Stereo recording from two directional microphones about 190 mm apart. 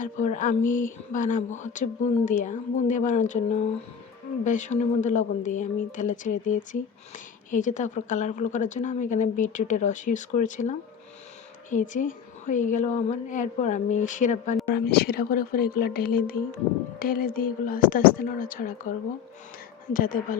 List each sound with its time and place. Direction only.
0.0 s speech: 40° left (ahead or behind)
14.7 s speech: 55° left (ahead or behind)
19.9 s speech: 45° left (ahead or behind)